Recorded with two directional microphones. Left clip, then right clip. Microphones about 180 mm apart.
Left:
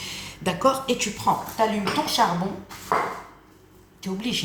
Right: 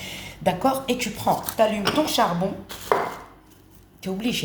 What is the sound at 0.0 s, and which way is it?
Speech, 30° right (ahead or behind).